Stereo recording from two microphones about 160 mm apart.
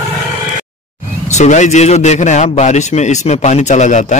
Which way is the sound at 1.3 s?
45° left (ahead or behind).